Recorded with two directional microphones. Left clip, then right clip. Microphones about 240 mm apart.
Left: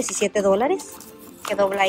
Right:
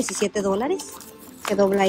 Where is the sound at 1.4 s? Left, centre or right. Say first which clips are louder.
Even; right.